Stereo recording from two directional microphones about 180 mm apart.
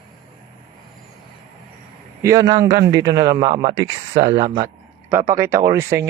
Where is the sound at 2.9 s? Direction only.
20° right (ahead or behind).